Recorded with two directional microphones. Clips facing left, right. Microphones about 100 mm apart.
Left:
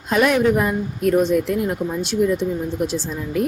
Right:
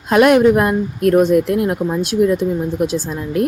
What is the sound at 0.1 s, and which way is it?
Speech, 65° right (ahead or behind).